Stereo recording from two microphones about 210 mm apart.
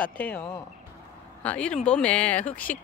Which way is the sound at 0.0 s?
5° left (ahead or behind).